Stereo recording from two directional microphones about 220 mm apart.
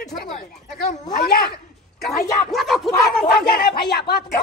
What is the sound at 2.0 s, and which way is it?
A man's voice, centre (ahead or behind).